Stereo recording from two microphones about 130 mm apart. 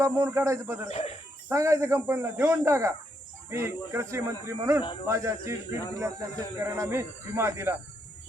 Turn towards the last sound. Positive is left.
turn(degrees=-20)  # may be behind; listen again after turning